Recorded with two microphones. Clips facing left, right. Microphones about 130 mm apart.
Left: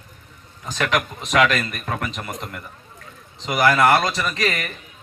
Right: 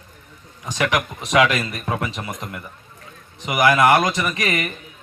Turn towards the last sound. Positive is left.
turn(degrees=-20)  # may be behind; listen again after turning